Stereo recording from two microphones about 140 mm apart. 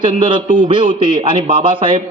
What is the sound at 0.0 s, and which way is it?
A man's voice, 35° right (ahead or behind).